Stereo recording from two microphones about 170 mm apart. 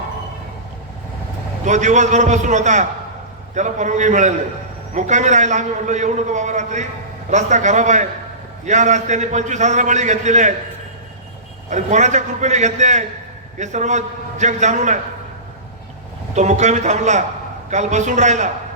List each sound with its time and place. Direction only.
1.6 s a man's voice: 45° right (ahead or behind)
11.7 s a man's voice: 45° right (ahead or behind)
16.3 s a man's voice: 45° right (ahead or behind)